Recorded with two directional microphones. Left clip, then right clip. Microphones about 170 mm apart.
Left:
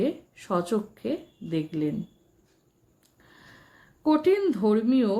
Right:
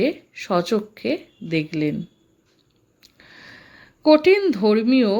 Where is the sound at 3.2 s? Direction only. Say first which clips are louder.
Right 9 dB; 30° right (ahead or behind).